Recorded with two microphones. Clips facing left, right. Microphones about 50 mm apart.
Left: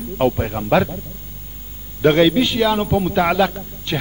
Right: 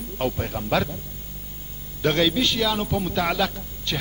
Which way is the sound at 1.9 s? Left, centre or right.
Left.